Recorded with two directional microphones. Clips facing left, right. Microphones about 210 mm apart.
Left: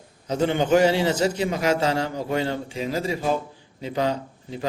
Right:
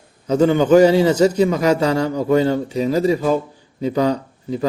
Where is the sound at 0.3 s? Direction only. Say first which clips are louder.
Right 7 dB; 40° right (ahead or behind).